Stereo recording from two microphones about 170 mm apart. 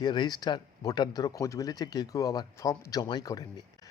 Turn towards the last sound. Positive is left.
turn(degrees=20)  # may be behind; listen again after turning